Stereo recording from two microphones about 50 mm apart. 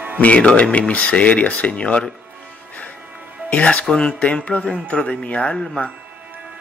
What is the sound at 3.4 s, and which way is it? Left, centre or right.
Speech, left.